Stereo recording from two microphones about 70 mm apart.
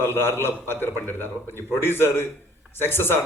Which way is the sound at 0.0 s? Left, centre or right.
Left.